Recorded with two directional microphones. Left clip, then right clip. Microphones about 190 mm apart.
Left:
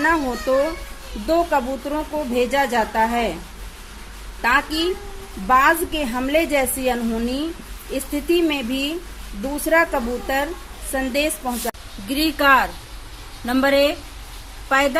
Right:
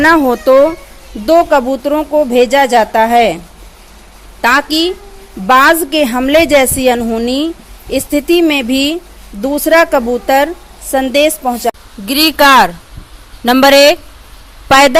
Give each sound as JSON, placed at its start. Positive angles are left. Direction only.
{"t": 0.0, "sound": "a woman's voice", "side_deg": -50}
{"t": 4.4, "sound": "a woman's voice", "side_deg": -50}